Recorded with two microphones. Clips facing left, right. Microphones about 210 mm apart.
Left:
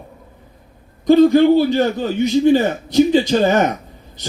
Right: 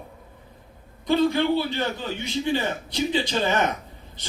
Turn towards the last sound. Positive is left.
turn(degrees=45)  # may be behind; listen again after turning